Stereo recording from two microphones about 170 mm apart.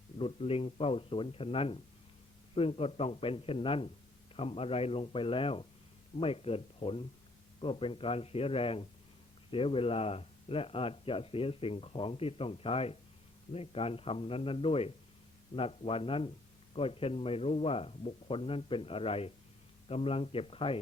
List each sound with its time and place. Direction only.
0.2 s speech: 35° left (ahead or behind)